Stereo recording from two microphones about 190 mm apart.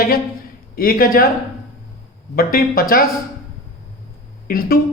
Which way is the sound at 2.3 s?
50° left (ahead or behind).